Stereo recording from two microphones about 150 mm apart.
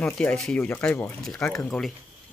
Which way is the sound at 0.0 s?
5° left (ahead or behind).